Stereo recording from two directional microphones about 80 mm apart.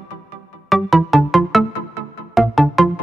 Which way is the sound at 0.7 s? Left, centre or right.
Centre.